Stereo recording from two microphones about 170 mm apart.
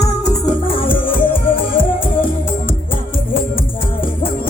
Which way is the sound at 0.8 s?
30° left (ahead or behind).